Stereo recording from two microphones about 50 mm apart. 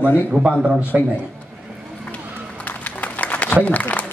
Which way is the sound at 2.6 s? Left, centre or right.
Left.